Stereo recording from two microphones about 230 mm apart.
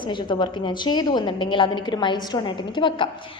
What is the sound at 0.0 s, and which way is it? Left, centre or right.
A woman's voice, centre.